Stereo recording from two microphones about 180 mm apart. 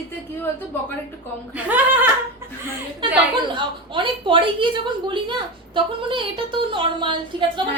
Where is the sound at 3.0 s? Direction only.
25° right (ahead or behind).